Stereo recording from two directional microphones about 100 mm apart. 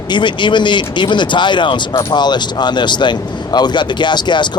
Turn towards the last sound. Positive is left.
turn(degrees=50)  # may be behind; listen again after turning